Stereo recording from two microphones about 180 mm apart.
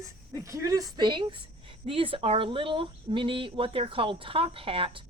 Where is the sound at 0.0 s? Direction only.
20° right (ahead or behind).